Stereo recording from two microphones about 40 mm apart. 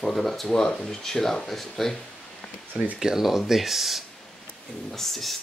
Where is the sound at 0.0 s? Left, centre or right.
Centre.